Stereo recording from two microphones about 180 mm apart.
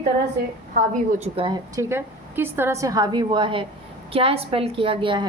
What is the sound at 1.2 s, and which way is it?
Speech, 30° right (ahead or behind).